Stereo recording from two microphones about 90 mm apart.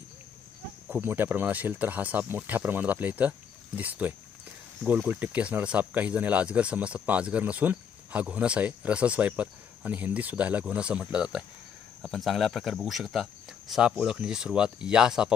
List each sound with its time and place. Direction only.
0.8 s speech: 20° right (ahead or behind)